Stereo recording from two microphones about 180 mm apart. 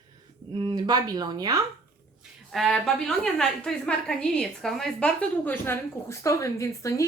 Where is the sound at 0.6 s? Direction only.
20° right (ahead or behind).